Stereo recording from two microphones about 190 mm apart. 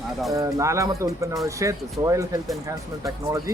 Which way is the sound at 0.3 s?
15° right (ahead or behind).